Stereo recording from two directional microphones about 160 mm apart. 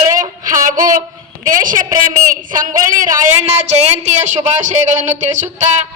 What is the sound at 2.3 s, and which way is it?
Speech, 55° right (ahead or behind).